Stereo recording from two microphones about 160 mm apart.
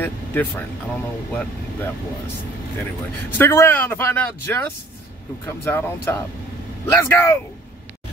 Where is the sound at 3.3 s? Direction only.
15° left (ahead or behind).